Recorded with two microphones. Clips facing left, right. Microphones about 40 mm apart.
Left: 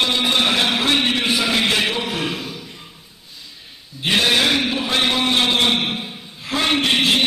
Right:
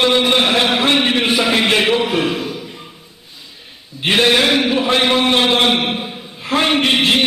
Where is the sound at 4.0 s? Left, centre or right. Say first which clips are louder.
Right 4 dB; right.